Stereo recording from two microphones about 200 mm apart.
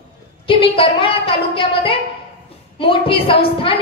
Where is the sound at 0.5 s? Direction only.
25° left (ahead or behind).